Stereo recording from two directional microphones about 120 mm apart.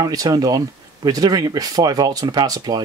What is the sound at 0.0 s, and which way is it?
Speech, 30° right (ahead or behind).